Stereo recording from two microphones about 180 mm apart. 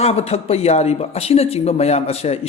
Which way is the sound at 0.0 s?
35° left (ahead or behind).